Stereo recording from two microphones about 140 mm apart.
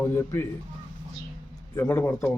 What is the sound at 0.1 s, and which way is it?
Speech, 15° left (ahead or behind).